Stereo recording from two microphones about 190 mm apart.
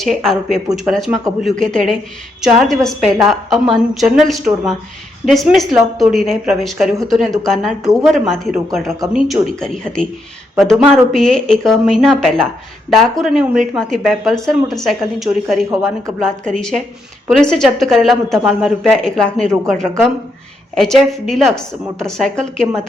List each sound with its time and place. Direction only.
0.0 s speech: centre (ahead or behind)
15.7 s speech: 15° right (ahead or behind)
16.2 s speech: 5° left (ahead or behind)
20.7 s speech: centre (ahead or behind)